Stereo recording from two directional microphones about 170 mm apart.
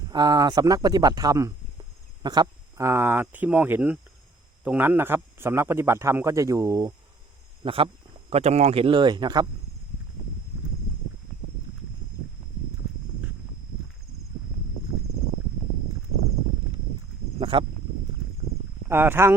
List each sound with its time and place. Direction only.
0.1 s speech: 25° right (ahead or behind)
7.6 s a man's voice: 30° right (ahead or behind)
17.4 s a sound: 30° right (ahead or behind)
18.9 s speech: 15° right (ahead or behind)